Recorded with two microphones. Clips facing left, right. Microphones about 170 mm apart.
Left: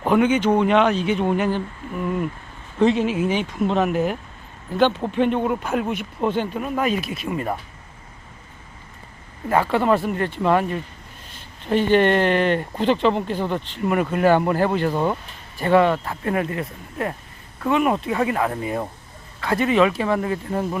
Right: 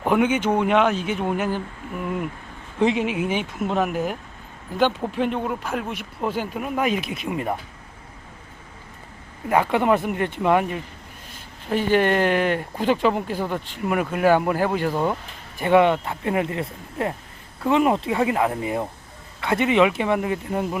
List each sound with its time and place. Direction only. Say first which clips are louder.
0.0 s speech: left 2 dB; 10° right (ahead or behind)
9.5 s speech: even; 15° right (ahead or behind)
15.5 s speech: even; 15° right (ahead or behind)